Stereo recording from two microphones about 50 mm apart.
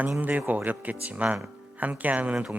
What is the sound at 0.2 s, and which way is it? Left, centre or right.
Speech, right.